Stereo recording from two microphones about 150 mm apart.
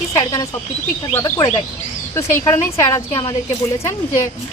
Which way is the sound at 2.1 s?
20° left (ahead or behind).